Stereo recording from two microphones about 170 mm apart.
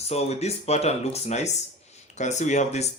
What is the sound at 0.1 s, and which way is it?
Speech, 40° left (ahead or behind).